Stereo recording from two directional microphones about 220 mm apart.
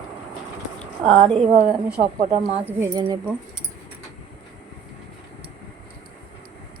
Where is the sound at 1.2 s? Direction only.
25° right (ahead or behind).